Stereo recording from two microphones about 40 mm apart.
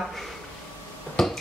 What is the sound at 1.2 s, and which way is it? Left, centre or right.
Finger snapping, centre.